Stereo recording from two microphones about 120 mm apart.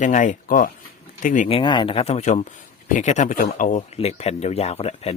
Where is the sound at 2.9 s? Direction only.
85° left; by 5.1 s 55° left (ahead or behind).